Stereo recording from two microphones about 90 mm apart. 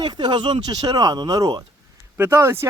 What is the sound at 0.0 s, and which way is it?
Speech, 55° right (ahead or behind).